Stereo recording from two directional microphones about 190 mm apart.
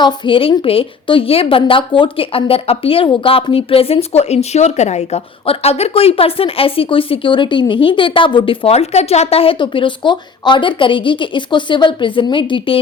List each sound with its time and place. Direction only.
0.0 s a woman's voice: 25° left (ahead or behind)